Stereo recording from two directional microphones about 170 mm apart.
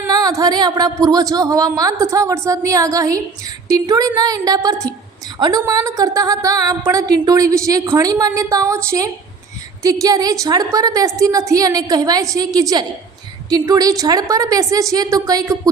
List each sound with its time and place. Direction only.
0.0 s a woman's voice: 20° right (ahead or behind)